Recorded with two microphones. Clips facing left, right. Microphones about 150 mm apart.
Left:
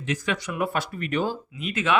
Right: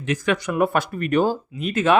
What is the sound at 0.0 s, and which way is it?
Speech, 55° right (ahead or behind).